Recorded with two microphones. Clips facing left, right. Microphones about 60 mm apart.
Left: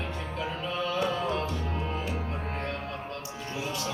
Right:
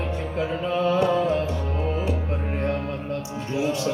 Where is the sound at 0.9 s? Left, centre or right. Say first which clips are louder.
Right 8 dB; right.